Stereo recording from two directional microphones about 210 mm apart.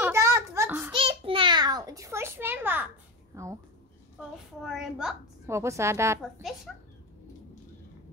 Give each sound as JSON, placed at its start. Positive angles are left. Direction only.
{"t": 0.0, "sound": "a sound", "side_deg": -15}
{"t": 0.9, "sound": "a sound", "side_deg": -25}
{"t": 3.3, "sound": "a woman's voice", "side_deg": -15}
{"t": 4.7, "sound": "a woman's voice", "side_deg": -5}
{"t": 5.5, "sound": "a woman's voice", "side_deg": -15}
{"t": 6.7, "sound": "speech", "side_deg": 0}